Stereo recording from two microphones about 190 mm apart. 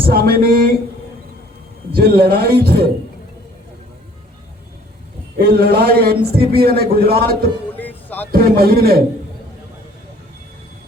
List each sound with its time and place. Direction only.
0.0 s a man's voice: 50° right (ahead or behind)
2.0 s a man's voice: 55° right (ahead or behind)
5.4 s a man's voice: 55° right (ahead or behind)
7.8 s music: 10° left (ahead or behind)
8.3 s a man's voice: 55° right (ahead or behind)